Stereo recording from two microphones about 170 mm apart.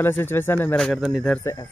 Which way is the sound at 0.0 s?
15° left (ahead or behind).